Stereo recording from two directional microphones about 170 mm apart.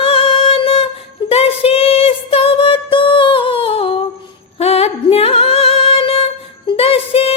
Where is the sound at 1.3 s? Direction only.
35° left (ahead or behind).